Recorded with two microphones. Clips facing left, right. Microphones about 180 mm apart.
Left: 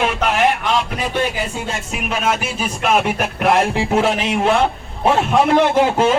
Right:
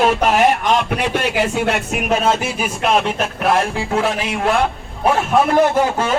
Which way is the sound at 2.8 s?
5° left (ahead or behind).